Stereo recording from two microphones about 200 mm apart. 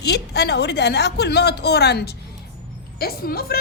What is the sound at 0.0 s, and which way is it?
A woman's voice, 55° left (ahead or behind).